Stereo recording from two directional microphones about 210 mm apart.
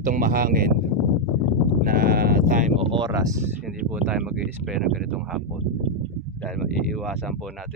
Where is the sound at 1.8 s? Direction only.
45° right (ahead or behind).